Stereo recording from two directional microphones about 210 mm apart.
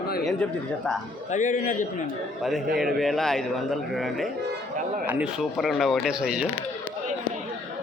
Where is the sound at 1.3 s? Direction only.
35° left (ahead or behind).